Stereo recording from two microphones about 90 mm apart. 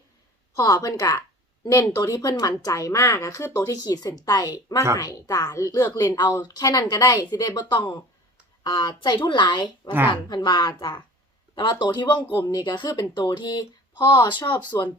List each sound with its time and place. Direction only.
0.5 s a woman's voice: 35° left (ahead or behind)
14.3 s speech: 60° left (ahead or behind)